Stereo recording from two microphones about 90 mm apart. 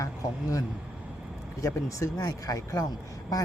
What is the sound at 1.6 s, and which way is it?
Speech, 35° left (ahead or behind).